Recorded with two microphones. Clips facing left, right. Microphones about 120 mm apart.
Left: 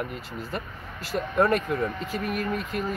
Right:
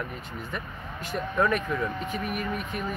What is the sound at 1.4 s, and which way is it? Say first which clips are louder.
Speech: left 3 dB; 35° left (ahead or behind).